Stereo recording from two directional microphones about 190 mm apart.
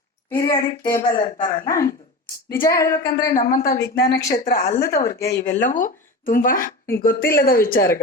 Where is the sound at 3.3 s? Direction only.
50° left (ahead or behind).